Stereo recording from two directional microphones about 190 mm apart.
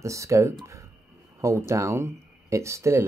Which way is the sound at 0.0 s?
15° right (ahead or behind).